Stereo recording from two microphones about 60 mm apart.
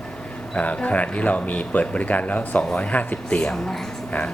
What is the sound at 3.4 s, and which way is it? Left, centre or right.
Speech, centre.